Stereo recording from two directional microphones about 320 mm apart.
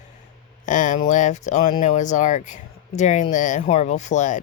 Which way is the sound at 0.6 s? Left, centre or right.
Left.